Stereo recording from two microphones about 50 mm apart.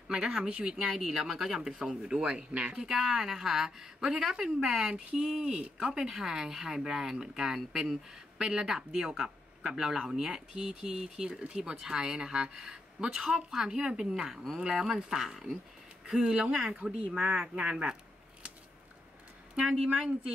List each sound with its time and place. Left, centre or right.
0.1 s speech: centre
19.7 s speech: right